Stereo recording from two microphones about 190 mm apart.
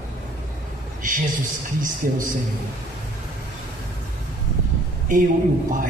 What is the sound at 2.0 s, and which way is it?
Speech, 45° right (ahead or behind).